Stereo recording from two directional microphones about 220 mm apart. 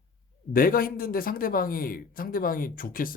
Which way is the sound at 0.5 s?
40° left (ahead or behind).